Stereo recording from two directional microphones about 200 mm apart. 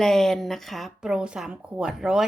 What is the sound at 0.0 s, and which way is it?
A woman's voice, centre (ahead or behind).